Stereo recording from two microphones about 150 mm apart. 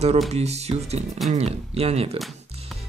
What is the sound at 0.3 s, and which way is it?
Speech, 45° right (ahead or behind).